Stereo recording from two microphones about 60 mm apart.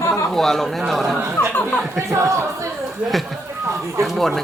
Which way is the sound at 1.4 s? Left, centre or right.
Left.